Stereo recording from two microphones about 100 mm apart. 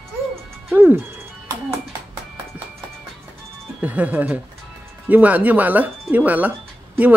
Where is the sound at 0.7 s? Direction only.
20° right (ahead or behind).